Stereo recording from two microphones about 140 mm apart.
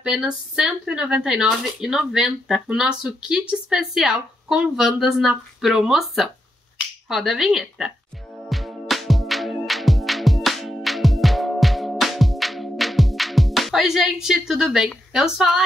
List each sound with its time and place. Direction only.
0.0 s speech: 5° right (ahead or behind)
8.5 s music: centre (ahead or behind)
14.2 s speech: 5° right (ahead or behind)